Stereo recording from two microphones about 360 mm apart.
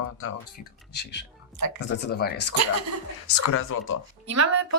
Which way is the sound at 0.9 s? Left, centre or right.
Left.